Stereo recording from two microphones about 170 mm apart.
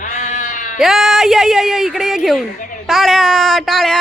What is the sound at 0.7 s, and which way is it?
Speech, centre (ahead or behind).